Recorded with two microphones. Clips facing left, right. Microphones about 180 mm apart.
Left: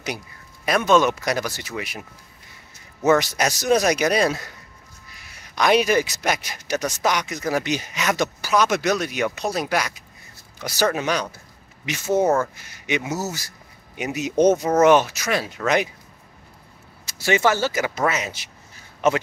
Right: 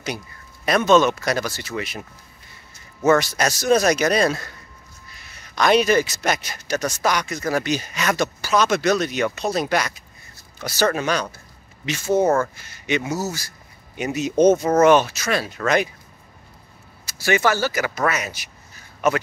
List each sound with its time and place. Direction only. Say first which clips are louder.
0.7 s speech: right 2 dB; 10° left (ahead or behind)
17.0 s speech: even; 25° left (ahead or behind)